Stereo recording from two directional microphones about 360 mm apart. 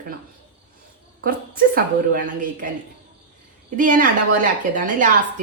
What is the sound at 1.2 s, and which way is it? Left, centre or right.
A woman's voice, right.